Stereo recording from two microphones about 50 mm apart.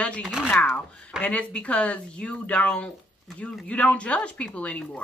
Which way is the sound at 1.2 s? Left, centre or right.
Left.